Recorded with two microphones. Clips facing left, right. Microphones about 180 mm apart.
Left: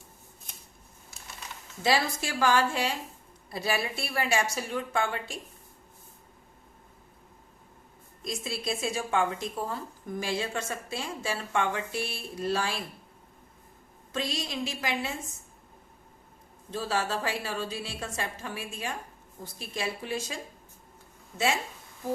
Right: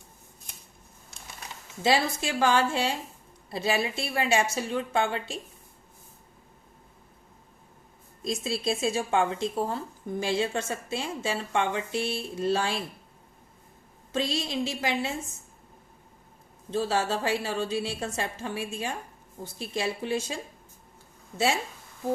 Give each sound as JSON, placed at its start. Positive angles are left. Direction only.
{"t": 1.8, "sound": "speech", "side_deg": -25}
{"t": 8.2, "sound": "speech", "side_deg": -25}
{"t": 14.1, "sound": "speech", "side_deg": -25}
{"t": 16.7, "sound": "speech", "side_deg": -25}